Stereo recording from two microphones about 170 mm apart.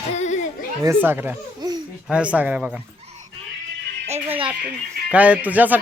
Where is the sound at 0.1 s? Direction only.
45° left (ahead or behind).